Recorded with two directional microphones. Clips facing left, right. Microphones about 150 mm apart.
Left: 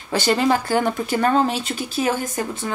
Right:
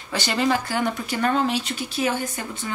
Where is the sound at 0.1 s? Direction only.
45° left (ahead or behind).